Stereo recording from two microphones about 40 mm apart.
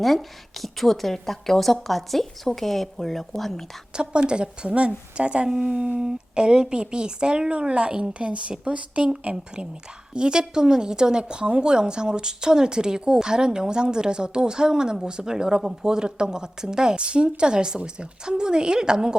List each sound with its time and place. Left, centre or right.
0.0 s a woman's voice: centre
3.9 s a woman's voice: right
5.5 s a woman's voice: centre; by 9.3 s right
10.2 s a woman's voice: right